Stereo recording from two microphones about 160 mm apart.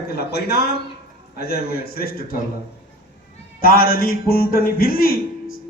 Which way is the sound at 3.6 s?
65° left (ahead or behind).